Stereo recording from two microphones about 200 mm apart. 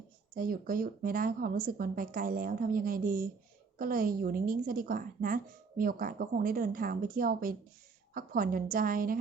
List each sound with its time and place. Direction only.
0.3 s a woman's voice: 45° right (ahead or behind)